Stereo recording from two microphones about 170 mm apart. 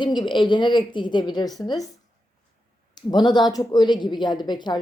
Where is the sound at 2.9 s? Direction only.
25° left (ahead or behind).